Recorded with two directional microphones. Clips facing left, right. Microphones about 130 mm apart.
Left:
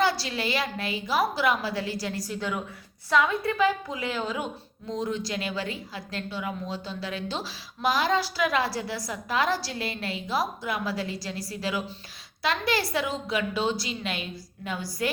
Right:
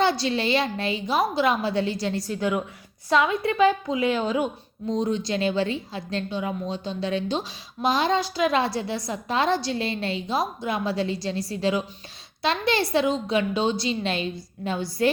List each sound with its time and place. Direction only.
0.0 s a woman's voice: 25° right (ahead or behind)